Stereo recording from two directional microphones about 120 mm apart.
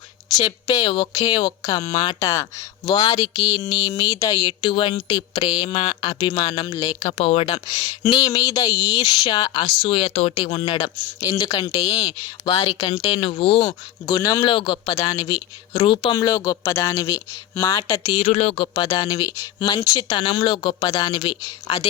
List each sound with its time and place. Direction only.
0.3 s speech: 35° left (ahead or behind)
2.1 s speech: 25° left (ahead or behind)
4.4 s speech: 45° left (ahead or behind)
7.1 s speech: 55° left (ahead or behind)
8.0 s speech: 40° left (ahead or behind)
8.9 s speech: 40° left (ahead or behind)
10.6 s speech: 40° left (ahead or behind)
11.8 s speech: 50° left (ahead or behind)
14.2 s speech: 30° left (ahead or behind)
14.4 s speech: 45° left (ahead or behind)
15.0 s speech: 30° left (ahead or behind)
15.8 s speech: 45° left (ahead or behind); by 17.7 s 25° left (ahead or behind)
17.9 s speech: 55° left (ahead or behind)